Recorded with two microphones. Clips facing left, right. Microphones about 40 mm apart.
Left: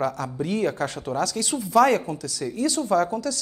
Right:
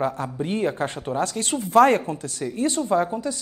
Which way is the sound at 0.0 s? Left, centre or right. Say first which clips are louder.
Right 1 dB; right.